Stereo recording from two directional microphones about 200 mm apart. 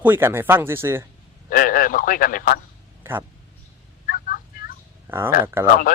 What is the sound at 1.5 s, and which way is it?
Speech, 45° left (ahead or behind).